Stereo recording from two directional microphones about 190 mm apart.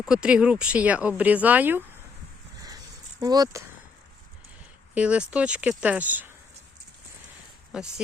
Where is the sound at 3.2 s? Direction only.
20° right (ahead or behind).